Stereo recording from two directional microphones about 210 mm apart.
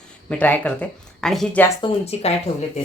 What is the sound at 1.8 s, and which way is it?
Speech, 30° left (ahead or behind).